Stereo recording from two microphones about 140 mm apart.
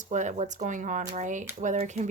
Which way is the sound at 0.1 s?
60° right (ahead or behind).